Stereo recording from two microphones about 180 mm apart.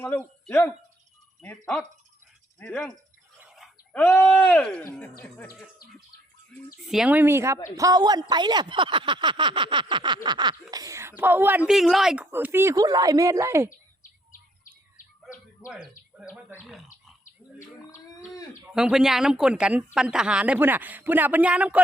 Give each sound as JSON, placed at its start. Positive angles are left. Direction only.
{"t": 0.0, "sound": "speech", "side_deg": 10}
{"t": 3.4, "sound": "a sound", "side_deg": 0}
{"t": 4.0, "sound": "speech", "side_deg": 10}
{"t": 5.8, "sound": "bird", "side_deg": 55}
{"t": 6.8, "sound": "speech", "side_deg": -5}
{"t": 16.1, "sound": "speech", "side_deg": 0}
{"t": 18.7, "sound": "speech", "side_deg": -5}